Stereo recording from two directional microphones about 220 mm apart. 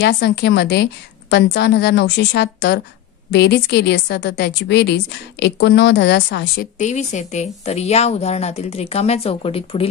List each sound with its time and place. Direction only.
0.0 s a woman's voice: 50° left (ahead or behind); by 9.8 s 25° left (ahead or behind)